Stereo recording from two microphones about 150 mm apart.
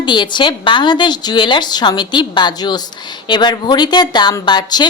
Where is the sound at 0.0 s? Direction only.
30° left (ahead or behind).